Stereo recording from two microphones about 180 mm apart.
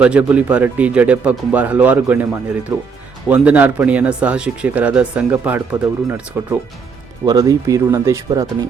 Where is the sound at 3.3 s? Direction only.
10° right (ahead or behind).